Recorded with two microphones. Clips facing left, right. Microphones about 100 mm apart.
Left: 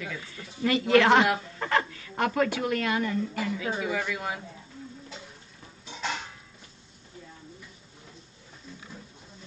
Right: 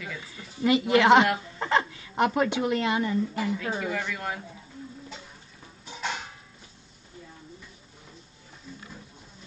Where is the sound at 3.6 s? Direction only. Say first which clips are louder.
Even; 5° left (ahead or behind).